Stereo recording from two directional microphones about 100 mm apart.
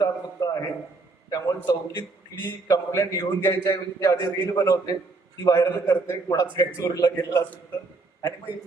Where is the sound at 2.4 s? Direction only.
30° left (ahead or behind).